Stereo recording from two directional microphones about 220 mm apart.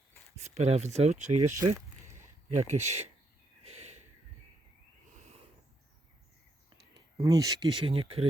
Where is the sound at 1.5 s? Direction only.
15° right (ahead or behind).